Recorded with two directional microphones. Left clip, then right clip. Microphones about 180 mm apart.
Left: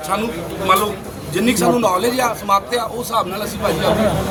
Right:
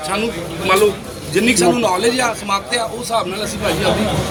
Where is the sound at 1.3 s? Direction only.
20° left (ahead or behind).